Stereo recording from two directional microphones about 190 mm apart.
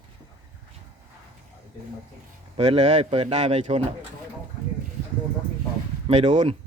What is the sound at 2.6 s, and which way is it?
A man's voice, 35° right (ahead or behind).